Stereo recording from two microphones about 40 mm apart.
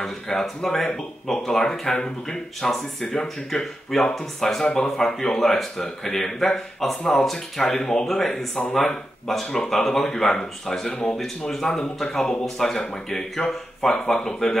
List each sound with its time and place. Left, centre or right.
0.0 s speech: centre
4.6 s speech: left
4.9 s speech: centre
13.5 s speech: centre